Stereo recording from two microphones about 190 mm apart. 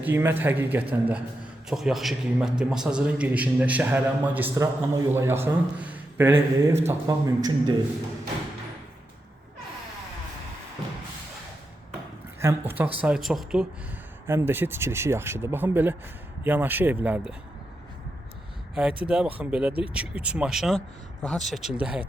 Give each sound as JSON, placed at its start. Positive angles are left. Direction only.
{"t": 0.0, "sound": "a man's voice", "side_deg": -10}
{"t": 12.4, "sound": "a man's voice", "side_deg": -10}
{"t": 18.7, "sound": "speech", "side_deg": -5}